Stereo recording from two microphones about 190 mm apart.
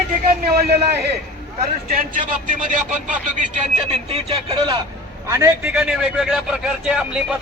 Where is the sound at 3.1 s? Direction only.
40° right (ahead or behind).